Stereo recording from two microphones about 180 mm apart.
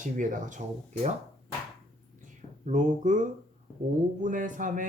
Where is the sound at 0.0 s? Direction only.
45° right (ahead or behind).